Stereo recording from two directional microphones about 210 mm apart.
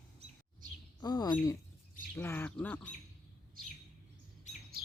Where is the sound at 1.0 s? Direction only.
20° left (ahead or behind).